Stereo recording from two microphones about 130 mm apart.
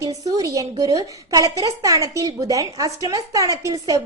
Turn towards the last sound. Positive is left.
turn(degrees=-25)  # may be behind; listen again after turning